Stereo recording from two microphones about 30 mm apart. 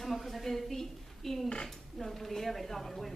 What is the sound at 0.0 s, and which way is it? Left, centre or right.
A woman's voice, centre.